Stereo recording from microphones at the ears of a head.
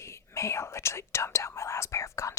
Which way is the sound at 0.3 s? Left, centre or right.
Left.